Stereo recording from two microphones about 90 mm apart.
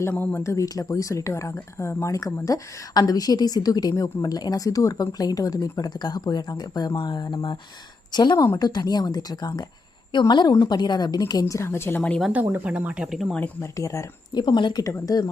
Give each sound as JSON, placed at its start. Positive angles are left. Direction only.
{"t": 0.1, "sound": "speech", "side_deg": 15}
{"t": 0.3, "sound": "a woman's voice", "side_deg": 35}
{"t": 10.1, "sound": "a woman's voice", "side_deg": 60}
{"t": 12.3, "sound": "speech", "side_deg": -20}
{"t": 13.6, "sound": "a woman's voice", "side_deg": 35}
{"t": 14.3, "sound": "a woman's voice", "side_deg": 60}